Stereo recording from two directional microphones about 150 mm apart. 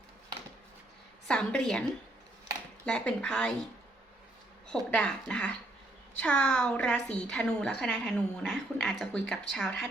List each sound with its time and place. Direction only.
1.3 s a woman's voice: 5° left (ahead or behind)
2.8 s speech: 5° left (ahead or behind)
4.7 s a woman's voice: 5° left (ahead or behind)